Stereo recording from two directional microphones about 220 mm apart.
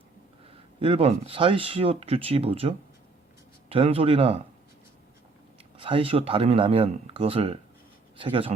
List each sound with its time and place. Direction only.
0.8 s speech: 25° right (ahead or behind)
5.7 s speech: 25° right (ahead or behind)